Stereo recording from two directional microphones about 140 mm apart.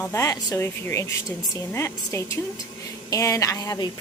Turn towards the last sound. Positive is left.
turn(degrees=30)  # may be behind; listen again after turning